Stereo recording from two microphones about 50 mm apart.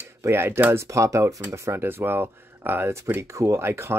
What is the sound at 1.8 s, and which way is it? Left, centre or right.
Speech, right.